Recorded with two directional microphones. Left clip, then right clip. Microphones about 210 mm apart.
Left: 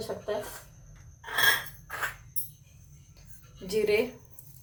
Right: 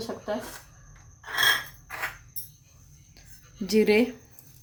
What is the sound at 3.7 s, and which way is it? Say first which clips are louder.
Speech: right 4 dB; 55° right (ahead or behind).